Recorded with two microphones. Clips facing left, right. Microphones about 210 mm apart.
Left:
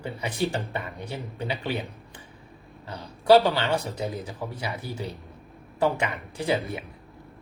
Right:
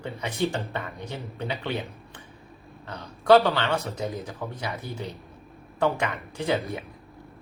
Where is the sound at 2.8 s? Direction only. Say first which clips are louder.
Left 1 dB; 30° left (ahead or behind).